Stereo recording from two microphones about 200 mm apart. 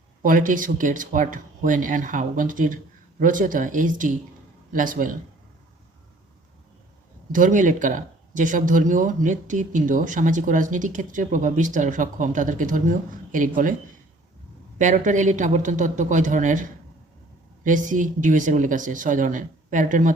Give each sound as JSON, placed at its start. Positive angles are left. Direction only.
{"t": 0.2, "sound": "speech", "side_deg": -40}
{"t": 7.3, "sound": "speech", "side_deg": -40}
{"t": 14.8, "sound": "speech", "side_deg": -40}